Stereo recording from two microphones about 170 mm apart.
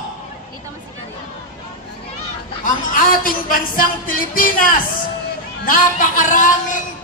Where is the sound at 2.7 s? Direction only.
55° left (ahead or behind).